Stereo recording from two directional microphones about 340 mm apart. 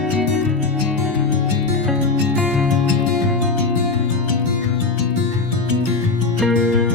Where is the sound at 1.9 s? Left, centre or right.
Centre.